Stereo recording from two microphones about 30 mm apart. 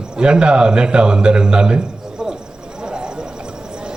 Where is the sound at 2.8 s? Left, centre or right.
Right.